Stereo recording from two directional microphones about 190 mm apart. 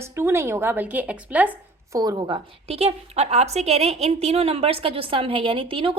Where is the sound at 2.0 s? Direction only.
20° right (ahead or behind).